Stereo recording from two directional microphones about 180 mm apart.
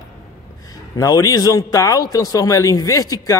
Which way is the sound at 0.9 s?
20° left (ahead or behind).